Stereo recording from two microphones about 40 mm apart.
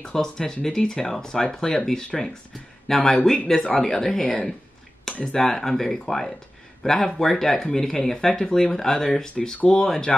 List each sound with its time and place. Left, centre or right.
0.0 s speech: centre